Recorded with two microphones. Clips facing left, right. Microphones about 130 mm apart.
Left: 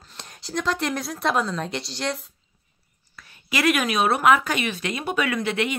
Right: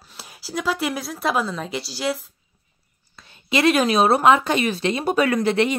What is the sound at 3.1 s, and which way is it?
Speech, 25° right (ahead or behind).